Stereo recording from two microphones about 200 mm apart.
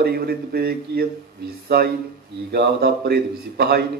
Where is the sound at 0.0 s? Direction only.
50° right (ahead or behind).